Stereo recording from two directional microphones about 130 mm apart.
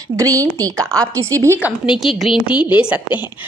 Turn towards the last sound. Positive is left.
turn(degrees=-10)  # may be behind; listen again after turning